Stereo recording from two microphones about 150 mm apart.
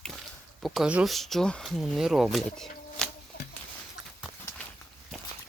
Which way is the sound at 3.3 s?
90° left.